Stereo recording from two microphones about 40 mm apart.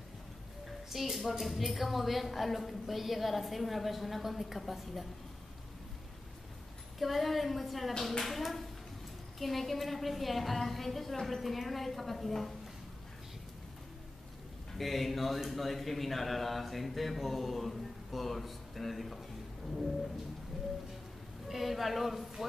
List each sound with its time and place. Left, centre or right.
0.8 s a woman's voice: centre
7.0 s speech: centre
14.8 s speech: centre
20.5 s music: centre
21.5 s speech: centre